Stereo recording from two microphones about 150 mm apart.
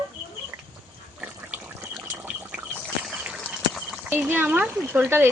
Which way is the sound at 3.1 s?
5° right (ahead or behind).